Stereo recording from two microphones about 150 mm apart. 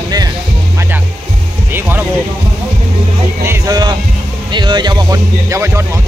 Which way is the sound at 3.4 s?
20° right (ahead or behind).